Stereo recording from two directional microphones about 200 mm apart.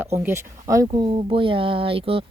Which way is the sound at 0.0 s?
10° right (ahead or behind).